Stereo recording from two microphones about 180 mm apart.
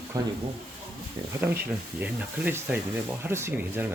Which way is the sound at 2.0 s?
10° right (ahead or behind).